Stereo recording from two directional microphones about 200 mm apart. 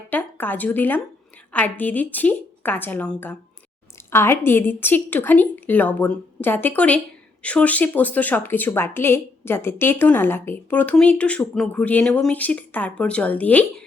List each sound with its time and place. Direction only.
0.1 s speech: 10° left (ahead or behind)